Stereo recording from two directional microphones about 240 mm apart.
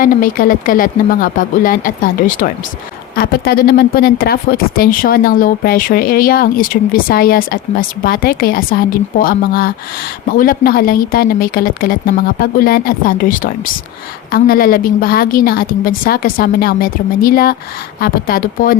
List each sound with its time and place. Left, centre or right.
0.0 s speech: left